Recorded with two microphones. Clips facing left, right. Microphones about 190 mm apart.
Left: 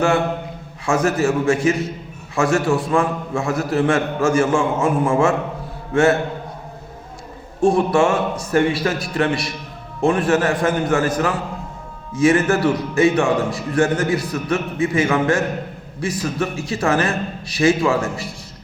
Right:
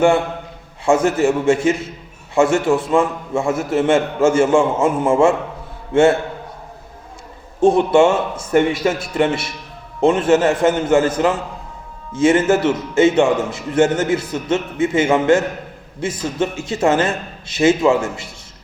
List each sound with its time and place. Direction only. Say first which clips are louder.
0.9 s a man's voice: right 3 dB; 25° right (ahead or behind)
7.6 s a man's voice: right 3 dB; 25° right (ahead or behind)